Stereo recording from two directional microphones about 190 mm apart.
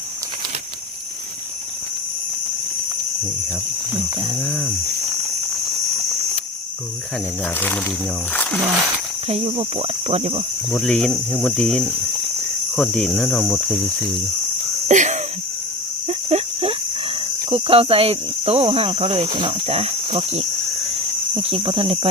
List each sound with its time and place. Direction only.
8.3 s speech: 5° left (ahead or behind)
9.3 s cricket: 30° right (ahead or behind)
10.8 s speech: 5° left (ahead or behind)
14.8 s wheeze: 40° right (ahead or behind)
16.0 s cricket: 30° right (ahead or behind)
21.3 s speech: 30° right (ahead or behind)